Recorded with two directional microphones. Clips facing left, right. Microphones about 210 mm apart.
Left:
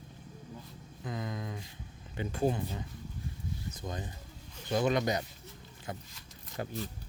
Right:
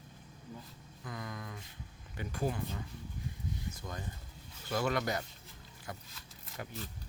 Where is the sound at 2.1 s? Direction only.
25° left (ahead or behind).